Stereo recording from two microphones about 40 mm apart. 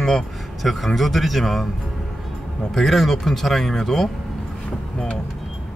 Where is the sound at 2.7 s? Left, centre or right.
Centre.